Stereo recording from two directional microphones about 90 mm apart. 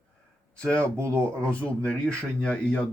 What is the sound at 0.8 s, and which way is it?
Speech, 30° right (ahead or behind).